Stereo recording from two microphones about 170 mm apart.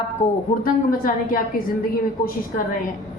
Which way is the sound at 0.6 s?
55° left (ahead or behind).